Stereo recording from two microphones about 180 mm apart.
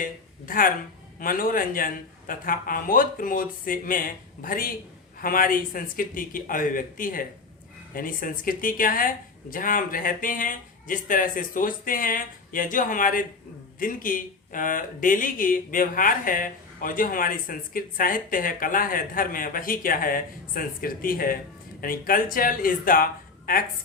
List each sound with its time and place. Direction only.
0.0 s speech: 50° left (ahead or behind)